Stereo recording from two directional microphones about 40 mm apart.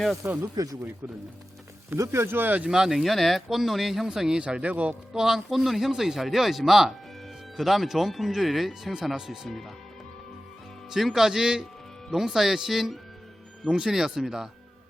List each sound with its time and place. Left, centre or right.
0.2 s speech: right
1.9 s speech: right
2.6 s speech: centre
3.0 s speech: centre
4.4 s speech: right
4.6 s a man's voice: right
5.1 s speech: centre
9.1 s speech: centre
9.5 s speech: centre
10.8 s speech: centre
13.7 s speech: right